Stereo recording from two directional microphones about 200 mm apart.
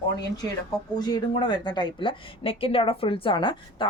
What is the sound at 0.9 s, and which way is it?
A woman's voice, 20° left (ahead or behind).